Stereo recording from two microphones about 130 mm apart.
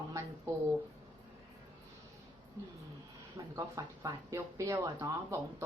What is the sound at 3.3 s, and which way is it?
Speech, 25° right (ahead or behind).